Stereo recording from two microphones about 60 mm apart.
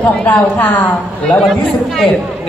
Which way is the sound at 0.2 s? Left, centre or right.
Left.